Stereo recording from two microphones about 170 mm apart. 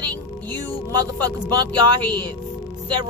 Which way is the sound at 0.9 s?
20° right (ahead or behind).